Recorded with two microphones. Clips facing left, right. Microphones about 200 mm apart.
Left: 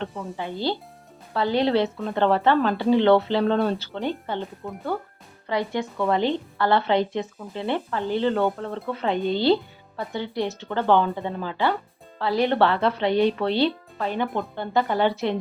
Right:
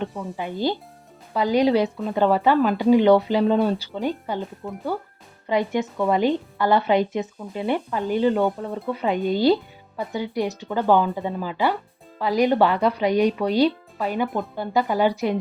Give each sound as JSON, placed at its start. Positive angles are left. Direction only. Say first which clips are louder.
{"t": 0.3, "sound": "speech", "louder": "right 2 dB", "side_deg": -15}
{"t": 4.4, "sound": "speech", "louder": "right 1 dB", "side_deg": 0}
{"t": 5.5, "sound": "speech", "louder": "right 3 dB", "side_deg": -20}